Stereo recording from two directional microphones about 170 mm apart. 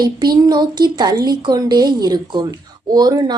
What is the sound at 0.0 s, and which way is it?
Speech, 25° right (ahead or behind).